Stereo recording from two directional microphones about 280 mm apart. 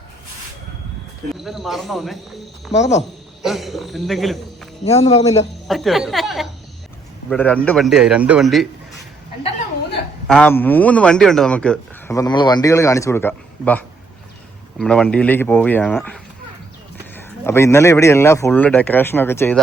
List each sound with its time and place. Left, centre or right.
1.5 s speech: centre
2.7 s speech: left
3.4 s a man's voice: centre
4.9 s speech: left
5.6 s speech: centre
10.2 s a man's voice: centre